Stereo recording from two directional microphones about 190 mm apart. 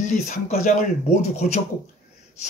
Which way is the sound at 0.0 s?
40° left (ahead or behind).